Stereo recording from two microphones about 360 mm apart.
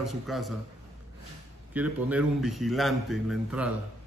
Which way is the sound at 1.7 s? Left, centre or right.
Centre.